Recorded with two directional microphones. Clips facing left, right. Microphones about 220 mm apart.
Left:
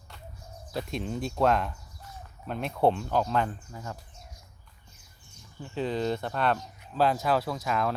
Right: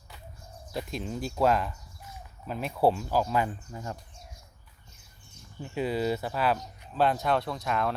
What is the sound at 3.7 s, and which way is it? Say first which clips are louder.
Speech: right 2 dB; 25° right (ahead or behind).